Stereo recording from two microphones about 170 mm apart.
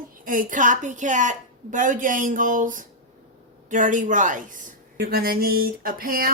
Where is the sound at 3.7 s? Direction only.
50° right (ahead or behind).